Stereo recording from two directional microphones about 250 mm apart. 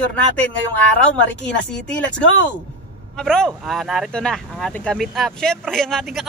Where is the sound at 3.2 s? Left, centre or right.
Centre.